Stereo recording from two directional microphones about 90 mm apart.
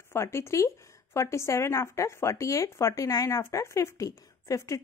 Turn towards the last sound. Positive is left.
turn(degrees=35)  # may be behind; listen again after turning